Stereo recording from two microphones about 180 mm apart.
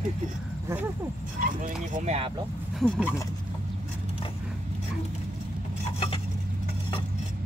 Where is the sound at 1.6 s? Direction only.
40° right (ahead or behind).